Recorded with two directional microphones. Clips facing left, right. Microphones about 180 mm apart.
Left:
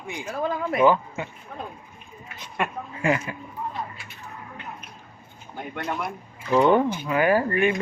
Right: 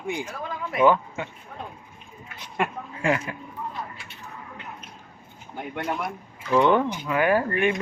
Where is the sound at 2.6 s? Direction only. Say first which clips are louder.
Even; 5° left (ahead or behind).